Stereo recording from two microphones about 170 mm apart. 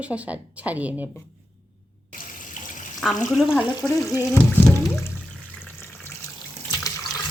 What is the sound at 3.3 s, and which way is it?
Speech, 5° right (ahead or behind).